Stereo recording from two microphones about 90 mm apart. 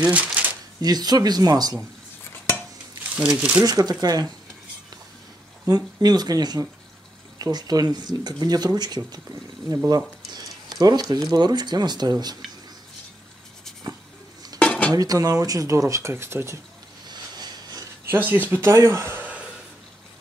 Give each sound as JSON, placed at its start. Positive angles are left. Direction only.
{"t": 0.1, "sound": "a sound", "side_deg": -15}
{"t": 0.7, "sound": "speech", "side_deg": -50}
{"t": 3.2, "sound": "speech", "side_deg": -15}
{"t": 3.6, "sound": "speech", "side_deg": -45}
{"t": 5.7, "sound": "speech", "side_deg": -50}
{"t": 14.6, "sound": "dishes", "side_deg": 15}
{"t": 14.9, "sound": "speech", "side_deg": -45}
{"t": 17.1, "sound": "a sound", "side_deg": -50}
{"t": 18.0, "sound": "speech", "side_deg": -20}